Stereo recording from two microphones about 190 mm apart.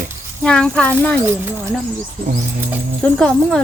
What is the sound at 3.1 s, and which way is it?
Speech, 5° left (ahead or behind).